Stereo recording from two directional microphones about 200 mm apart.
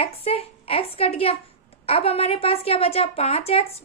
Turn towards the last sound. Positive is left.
turn(degrees=30)  # may be behind; listen again after turning